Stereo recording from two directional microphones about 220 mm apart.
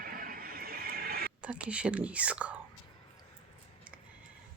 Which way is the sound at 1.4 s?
5° right (ahead or behind).